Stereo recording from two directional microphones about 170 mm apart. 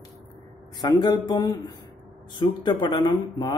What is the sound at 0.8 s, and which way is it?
A man's voice, 25° left (ahead or behind).